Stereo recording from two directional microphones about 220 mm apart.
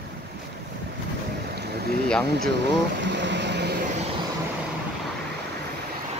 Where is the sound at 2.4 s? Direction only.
50° right (ahead or behind).